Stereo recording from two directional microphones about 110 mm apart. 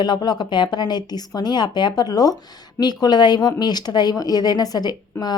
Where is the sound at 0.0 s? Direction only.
40° left (ahead or behind).